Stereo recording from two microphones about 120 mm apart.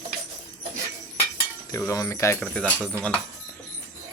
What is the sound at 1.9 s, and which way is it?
Speech, 25° left (ahead or behind).